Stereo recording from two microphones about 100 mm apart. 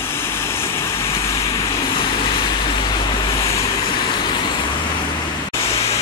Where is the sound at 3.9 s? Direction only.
50° left (ahead or behind).